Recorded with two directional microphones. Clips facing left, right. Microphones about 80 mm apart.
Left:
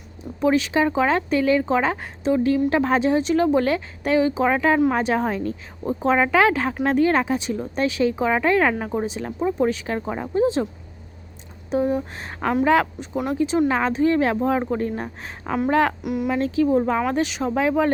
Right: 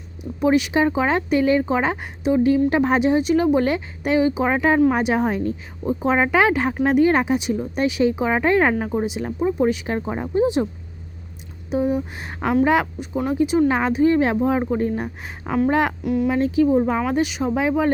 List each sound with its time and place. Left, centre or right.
0.3 s speech: centre
11.7 s a woman's voice: centre
16.0 s speech: centre
16.3 s speech: centre